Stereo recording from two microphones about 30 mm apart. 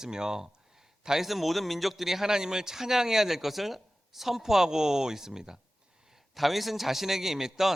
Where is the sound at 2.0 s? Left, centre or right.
Centre.